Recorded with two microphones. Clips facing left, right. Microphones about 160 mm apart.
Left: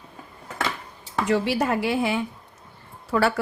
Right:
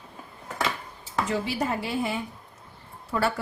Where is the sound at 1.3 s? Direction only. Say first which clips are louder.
Left 7 dB; 75° left (ahead or behind).